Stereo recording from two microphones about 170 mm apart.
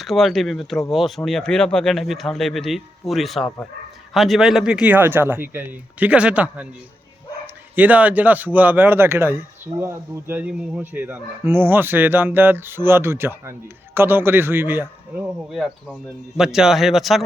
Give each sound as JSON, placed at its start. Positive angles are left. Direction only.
{"t": 0.0, "sound": "speech", "side_deg": 0}